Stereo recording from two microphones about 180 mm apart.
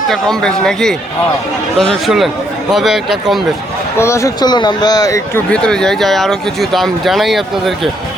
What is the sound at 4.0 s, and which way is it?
Speech, 15° left (ahead or behind).